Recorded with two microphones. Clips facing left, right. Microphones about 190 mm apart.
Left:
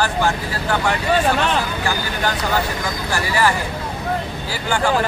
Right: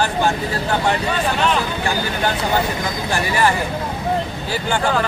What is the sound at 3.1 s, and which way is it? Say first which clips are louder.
Speech: right 1 dB; 20° right (ahead or behind).